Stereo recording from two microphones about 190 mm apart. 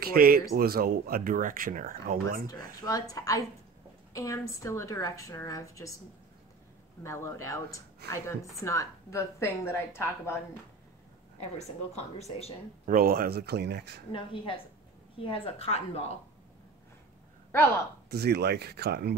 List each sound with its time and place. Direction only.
0.0 s speech: 50° right (ahead or behind)
2.8 s a woman's voice: 20° left (ahead or behind)
7.0 s a woman's voice: 15° left (ahead or behind)
11.3 s speech: 35° left (ahead or behind)
12.8 s speech: 50° right (ahead or behind)
14.1 s a woman's voice: 25° left (ahead or behind)
17.5 s a woman's voice: 10° left (ahead or behind)
18.1 s speech: 60° right (ahead or behind)